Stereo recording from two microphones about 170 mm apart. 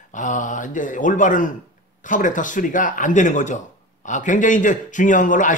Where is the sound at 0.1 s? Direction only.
50° left (ahead or behind).